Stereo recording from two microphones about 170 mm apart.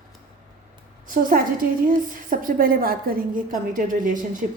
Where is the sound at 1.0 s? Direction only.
55° right (ahead or behind).